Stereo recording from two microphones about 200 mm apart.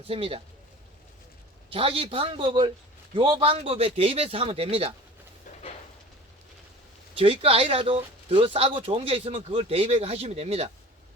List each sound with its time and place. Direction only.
0.1 s speech: 30° right (ahead or behind)
1.7 s speech: 25° right (ahead or behind)
7.2 s speech: 30° right (ahead or behind)